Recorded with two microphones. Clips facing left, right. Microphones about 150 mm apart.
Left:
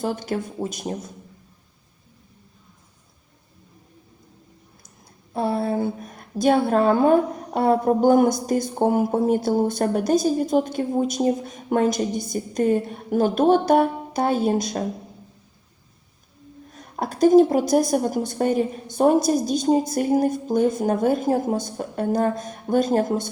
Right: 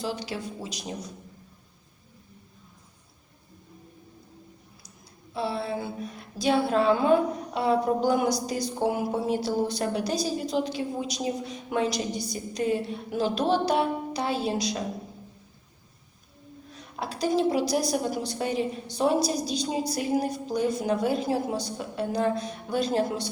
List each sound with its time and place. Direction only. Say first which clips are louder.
0.0 s speech: left 6 dB; 50° left (ahead or behind)
5.3 s speech: left 6 dB; 50° left (ahead or behind)
16.7 s speech: left 6 dB; 50° left (ahead or behind)